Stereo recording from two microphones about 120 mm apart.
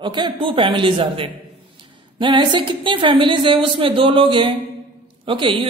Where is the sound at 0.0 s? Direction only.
40° right (ahead or behind).